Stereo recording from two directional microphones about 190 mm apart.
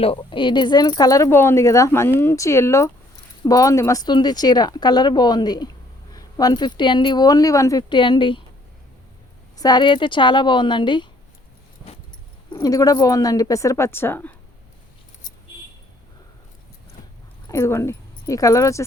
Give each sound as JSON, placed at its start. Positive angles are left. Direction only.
{"t": 0.0, "sound": "speech", "side_deg": 30}
{"t": 9.6, "sound": "speech", "side_deg": 20}
{"t": 12.5, "sound": "speech", "side_deg": 20}
{"t": 17.5, "sound": "speech", "side_deg": 15}